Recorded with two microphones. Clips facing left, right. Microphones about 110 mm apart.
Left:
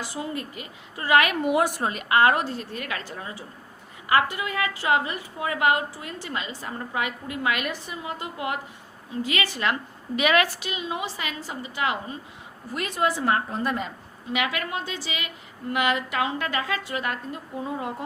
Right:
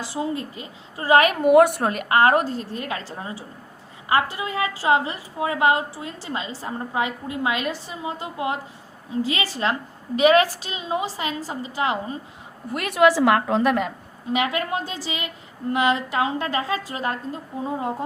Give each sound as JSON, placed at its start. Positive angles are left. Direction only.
{"t": 0.0, "sound": "a woman's voice", "side_deg": -25}
{"t": 2.6, "sound": "a woman's voice", "side_deg": -30}
{"t": 12.7, "sound": "a woman's voice", "side_deg": -65}
{"t": 14.3, "sound": "a woman's voice", "side_deg": -35}